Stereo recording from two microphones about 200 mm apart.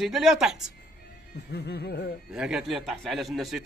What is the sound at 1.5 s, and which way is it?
Speech, 55° left (ahead or behind).